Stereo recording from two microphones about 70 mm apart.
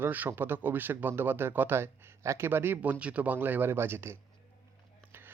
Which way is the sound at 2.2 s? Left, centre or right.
Right.